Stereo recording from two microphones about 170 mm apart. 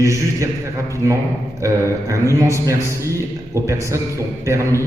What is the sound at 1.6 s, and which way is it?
A man's voice, 15° right (ahead or behind).